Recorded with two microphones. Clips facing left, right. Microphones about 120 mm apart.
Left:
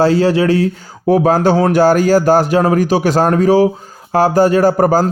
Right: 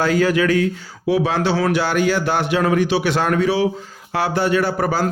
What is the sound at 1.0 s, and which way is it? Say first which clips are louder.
A man's voice: left 7 dB; 45° left (ahead or behind).